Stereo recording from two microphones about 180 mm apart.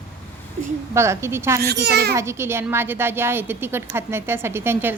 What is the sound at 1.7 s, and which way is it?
Speech, 65° right (ahead or behind).